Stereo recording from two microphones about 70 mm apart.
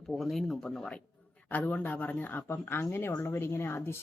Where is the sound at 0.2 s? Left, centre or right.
Centre.